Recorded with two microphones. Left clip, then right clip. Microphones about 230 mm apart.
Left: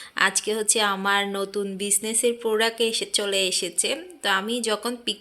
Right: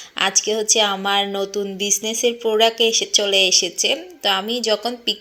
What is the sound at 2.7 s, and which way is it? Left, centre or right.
Speech, left.